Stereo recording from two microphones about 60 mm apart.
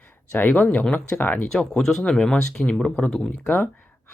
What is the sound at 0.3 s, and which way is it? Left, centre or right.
Speech, left.